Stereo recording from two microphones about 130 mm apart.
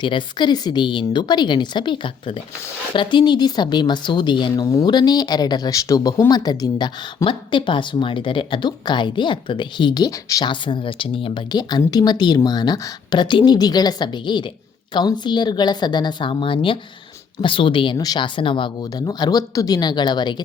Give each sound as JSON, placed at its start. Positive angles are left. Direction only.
{"t": 0.0, "sound": "speech", "side_deg": 35}
{"t": 10.5, "sound": "speech", "side_deg": 40}